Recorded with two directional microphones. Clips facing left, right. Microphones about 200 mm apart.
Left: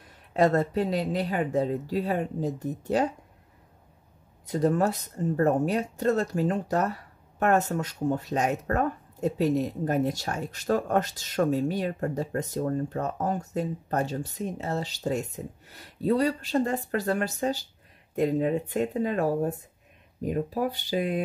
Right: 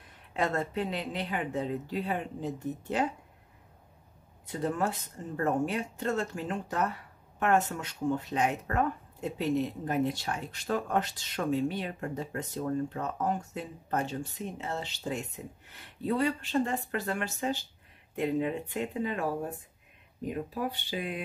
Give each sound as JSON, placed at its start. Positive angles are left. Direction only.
{"t": 0.3, "sound": "speech", "side_deg": 40}
{"t": 4.5, "sound": "speech", "side_deg": 40}